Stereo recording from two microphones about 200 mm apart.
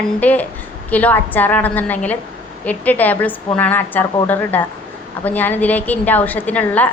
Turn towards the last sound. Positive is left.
turn(degrees=10)  # may be behind; listen again after turning